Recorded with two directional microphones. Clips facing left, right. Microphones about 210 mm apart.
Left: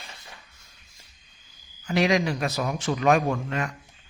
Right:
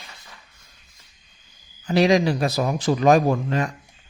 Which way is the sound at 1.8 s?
35° right (ahead or behind).